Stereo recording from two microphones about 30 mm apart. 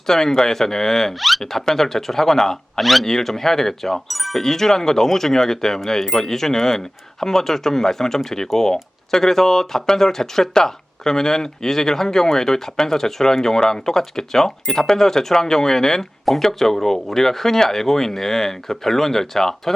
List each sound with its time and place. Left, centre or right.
0.1 s speech: centre
2.8 s speech: centre
3.1 s speech: centre
4.1 s speech: centre
4.4 s speech: centre